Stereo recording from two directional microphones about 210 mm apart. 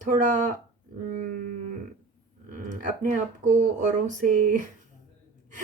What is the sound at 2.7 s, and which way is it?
Speech, 40° right (ahead or behind).